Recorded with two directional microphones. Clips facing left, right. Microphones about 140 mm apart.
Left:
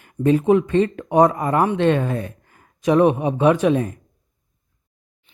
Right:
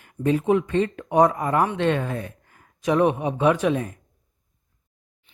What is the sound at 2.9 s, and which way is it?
Speech, 25° left (ahead or behind).